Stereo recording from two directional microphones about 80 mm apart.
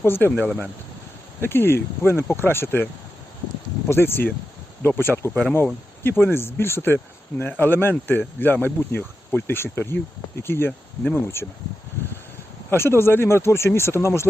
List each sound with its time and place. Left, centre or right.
0.0 s speech: left
3.8 s speech: left
10.7 s speech: centre
12.7 s speech: left